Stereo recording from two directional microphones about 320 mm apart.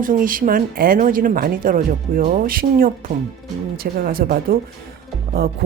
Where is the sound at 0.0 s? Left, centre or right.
Right.